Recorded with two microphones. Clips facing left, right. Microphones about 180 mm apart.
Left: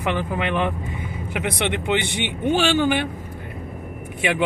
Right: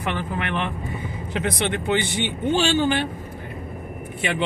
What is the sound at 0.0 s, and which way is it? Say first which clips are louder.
Speech: left 3 dB; 15° left (ahead or behind).